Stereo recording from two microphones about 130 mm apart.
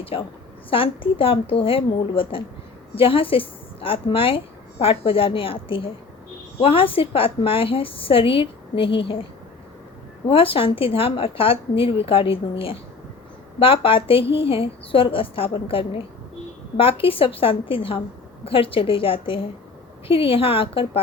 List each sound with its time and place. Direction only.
0.0 s a woman's voice: 45° left (ahead or behind)
10.2 s a woman's voice: 45° left (ahead or behind)